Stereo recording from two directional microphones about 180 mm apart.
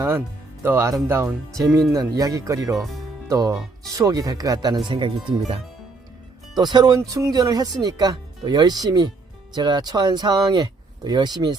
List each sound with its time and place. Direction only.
0.6 s speech: 15° right (ahead or behind)
2.7 s speech: centre (ahead or behind)
3.2 s speech: 20° right (ahead or behind)
6.6 s speech: 25° right (ahead or behind)